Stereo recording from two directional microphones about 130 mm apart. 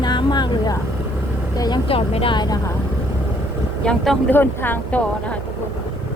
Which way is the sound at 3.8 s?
5° left (ahead or behind).